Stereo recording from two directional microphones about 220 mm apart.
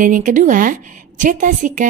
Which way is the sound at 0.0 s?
35° right (ahead or behind).